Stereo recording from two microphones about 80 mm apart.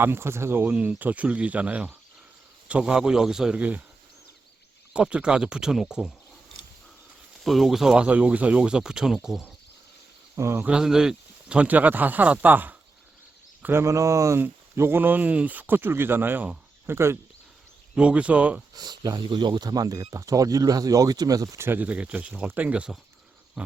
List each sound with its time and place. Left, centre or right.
0.0 s speech: right; by 3.6 s centre
3.6 s speech: centre
4.9 s speech: centre
7.4 s speech: centre
8.0 s speech: centre
10.3 s speech: right
10.6 s speech: centre; by 13.8 s right
13.8 s speech: right
14.4 s speech: right
17.9 s speech: centre
18.7 s speech: right
21.6 s speech: right